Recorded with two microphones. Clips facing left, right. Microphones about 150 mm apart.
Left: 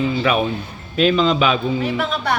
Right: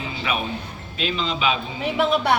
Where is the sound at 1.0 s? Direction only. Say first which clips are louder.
Left 10 dB; 50° left (ahead or behind).